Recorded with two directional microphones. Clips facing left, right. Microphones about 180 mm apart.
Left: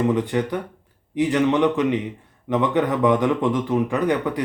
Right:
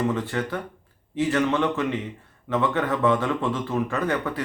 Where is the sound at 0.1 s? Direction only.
15° left (ahead or behind).